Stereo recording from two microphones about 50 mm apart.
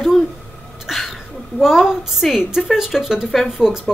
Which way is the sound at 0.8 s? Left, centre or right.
Centre.